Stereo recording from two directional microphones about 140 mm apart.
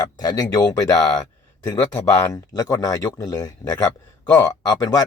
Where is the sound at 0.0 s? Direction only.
25° left (ahead or behind).